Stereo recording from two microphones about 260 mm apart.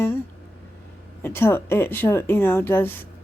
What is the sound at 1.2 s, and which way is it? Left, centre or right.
Speech, centre.